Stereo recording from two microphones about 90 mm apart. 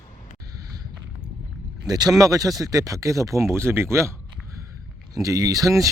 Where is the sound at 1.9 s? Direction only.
45° right (ahead or behind); by 4.1 s 30° right (ahead or behind).